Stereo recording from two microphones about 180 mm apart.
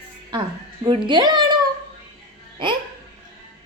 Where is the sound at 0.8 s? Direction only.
25° right (ahead or behind).